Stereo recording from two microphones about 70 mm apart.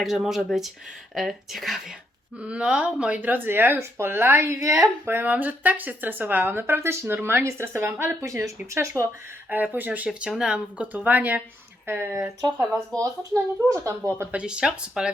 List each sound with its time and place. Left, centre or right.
0.0 s speech: centre
2.4 s speech: centre; by 4.9 s right
5.0 s speech: right
8.2 s speech: right
8.7 s speech: right
9.5 s speech: right
10.2 s speech: centre; by 12.3 s right
13.0 s speech: right
14.3 s speech: centre